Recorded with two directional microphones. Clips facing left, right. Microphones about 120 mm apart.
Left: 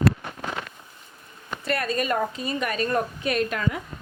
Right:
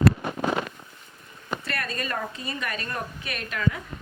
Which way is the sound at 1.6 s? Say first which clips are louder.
Left 10 dB; 20° left (ahead or behind).